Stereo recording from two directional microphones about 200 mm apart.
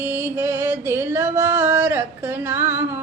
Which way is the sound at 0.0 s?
10° right (ahead or behind).